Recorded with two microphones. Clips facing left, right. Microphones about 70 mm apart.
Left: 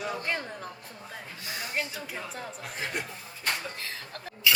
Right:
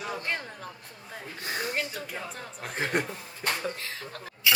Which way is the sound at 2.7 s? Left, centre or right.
Right.